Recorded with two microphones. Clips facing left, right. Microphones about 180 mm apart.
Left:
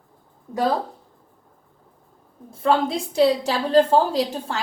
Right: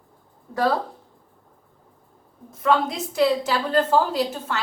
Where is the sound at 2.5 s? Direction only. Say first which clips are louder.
Left 1 dB; 30° left (ahead or behind).